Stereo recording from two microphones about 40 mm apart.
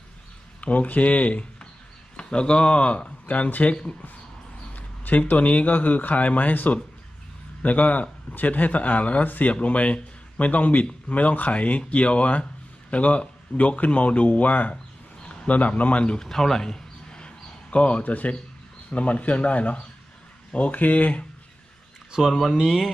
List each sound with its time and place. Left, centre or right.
0.6 s speech: left
2.1 s speech: left
3.3 s speech: left
4.7 s a sound: left
5.4 s a man's voice: left
16.2 s a sound: centre
17.6 s speech: left
18.0 s speech: left
18.9 s speech: left